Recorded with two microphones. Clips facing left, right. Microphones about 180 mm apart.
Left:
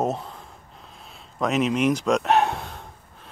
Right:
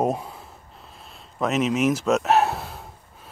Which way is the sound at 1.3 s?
Centre (ahead or behind).